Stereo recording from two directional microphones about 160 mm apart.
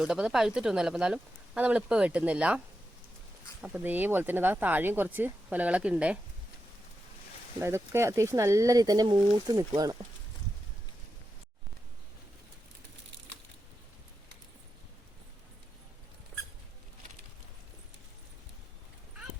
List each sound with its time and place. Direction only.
0.0 s speech: 5° right (ahead or behind)
3.6 s speech: 10° right (ahead or behind)
7.6 s speech: 15° right (ahead or behind)